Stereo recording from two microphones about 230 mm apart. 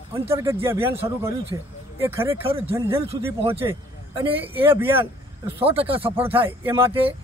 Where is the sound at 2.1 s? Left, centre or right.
Centre.